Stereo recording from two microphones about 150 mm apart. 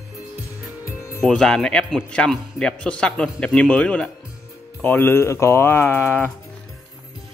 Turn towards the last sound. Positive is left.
turn(degrees=10)  # may be behind; listen again after turning